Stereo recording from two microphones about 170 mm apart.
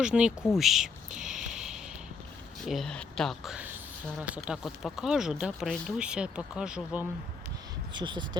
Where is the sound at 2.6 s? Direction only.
Centre (ahead or behind).